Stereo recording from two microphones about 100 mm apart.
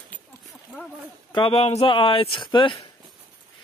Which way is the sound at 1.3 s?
65° left (ahead or behind).